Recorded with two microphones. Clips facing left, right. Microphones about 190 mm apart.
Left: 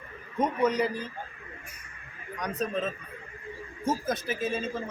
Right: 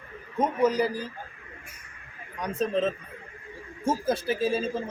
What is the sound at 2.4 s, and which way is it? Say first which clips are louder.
A man's voice: right 4 dB; 30° right (ahead or behind).